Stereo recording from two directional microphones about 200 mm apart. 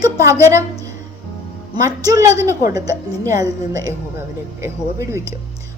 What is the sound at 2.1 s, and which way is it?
A woman's voice, 15° right (ahead or behind).